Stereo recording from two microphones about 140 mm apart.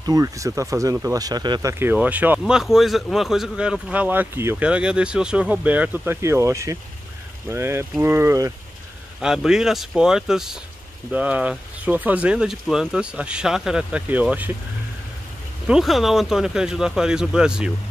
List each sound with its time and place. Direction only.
0.0 s speech: 25° right (ahead or behind)
9.2 s speech: 5° right (ahead or behind)
15.6 s speech: 5° right (ahead or behind)